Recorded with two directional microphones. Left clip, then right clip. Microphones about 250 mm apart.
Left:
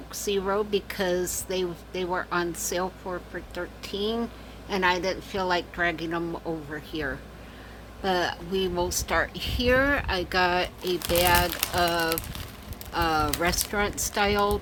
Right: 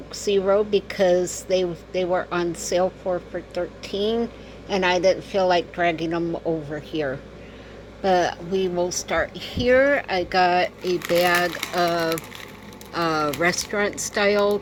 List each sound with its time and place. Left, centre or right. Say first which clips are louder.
0.1 s a woman's voice: right 7 dB; centre